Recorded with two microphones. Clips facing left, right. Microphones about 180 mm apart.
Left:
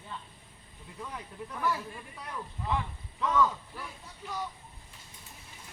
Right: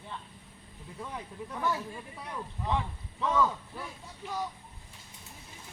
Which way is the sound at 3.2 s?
25° right (ahead or behind).